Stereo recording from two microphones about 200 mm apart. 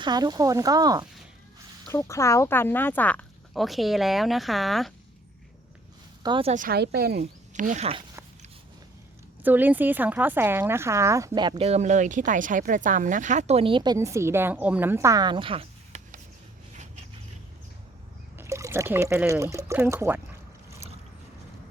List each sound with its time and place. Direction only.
0.0 s speech: 20° right (ahead or behind)
1.9 s speech: 15° left (ahead or behind)
6.2 s speech: 25° right (ahead or behind)
6.5 s speech: 45° right (ahead or behind)
7.2 s speech: 40° right (ahead or behind)
9.4 s a woman's voice: 10° right (ahead or behind); by 16.2 s 30° right (ahead or behind)
18.3 s speech: 15° right (ahead or behind)